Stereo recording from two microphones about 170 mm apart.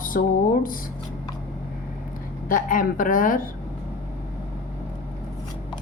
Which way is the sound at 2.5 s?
50° left (ahead or behind).